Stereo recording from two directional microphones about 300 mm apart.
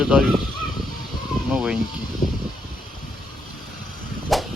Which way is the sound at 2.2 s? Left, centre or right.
Left.